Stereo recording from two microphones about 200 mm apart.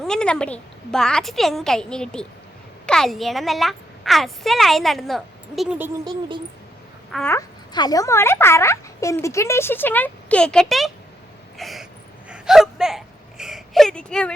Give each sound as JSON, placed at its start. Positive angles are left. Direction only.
{"t": 0.0, "sound": "a child's voice", "side_deg": 5}
{"t": 6.1, "sound": "speech", "side_deg": -25}
{"t": 7.1, "sound": "a sound", "side_deg": 5}
{"t": 7.3, "sound": "speech", "side_deg": 20}
{"t": 11.5, "sound": "a sound", "side_deg": 0}
{"t": 12.3, "sound": "gasp", "side_deg": 0}